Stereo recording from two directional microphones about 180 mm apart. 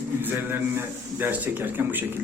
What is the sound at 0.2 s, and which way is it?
A man's voice, 10° right (ahead or behind).